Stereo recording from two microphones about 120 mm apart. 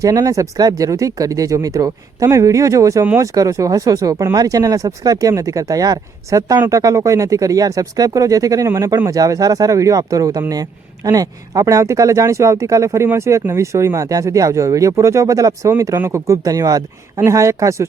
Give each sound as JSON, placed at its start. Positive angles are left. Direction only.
{"t": 0.0, "sound": "speech", "side_deg": -30}